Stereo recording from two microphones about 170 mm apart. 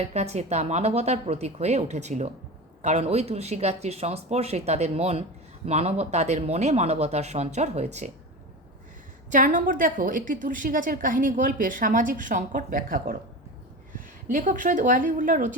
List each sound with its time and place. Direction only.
0.0 s speech: 40° right (ahead or behind)
9.3 s a woman's voice: 50° right (ahead or behind)
14.3 s a woman's voice: 50° right (ahead or behind)